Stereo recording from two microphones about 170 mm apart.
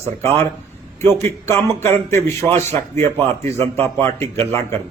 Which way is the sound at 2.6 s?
40° right (ahead or behind).